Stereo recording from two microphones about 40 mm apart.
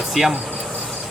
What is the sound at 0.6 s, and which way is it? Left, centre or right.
Vehicle, centre.